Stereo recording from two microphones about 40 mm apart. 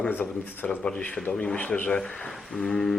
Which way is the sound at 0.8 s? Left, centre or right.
Left.